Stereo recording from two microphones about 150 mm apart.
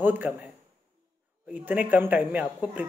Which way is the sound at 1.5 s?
10° right (ahead or behind).